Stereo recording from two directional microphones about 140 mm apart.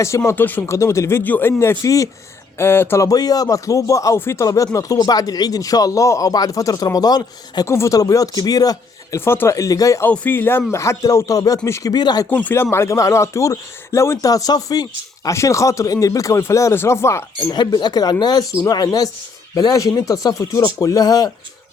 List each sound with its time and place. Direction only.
0.3 s speech: 15° left (ahead or behind); by 12.3 s 30° left (ahead or behind)
12.3 s speech: 15° left (ahead or behind)
17.5 s speech: 30° left (ahead or behind)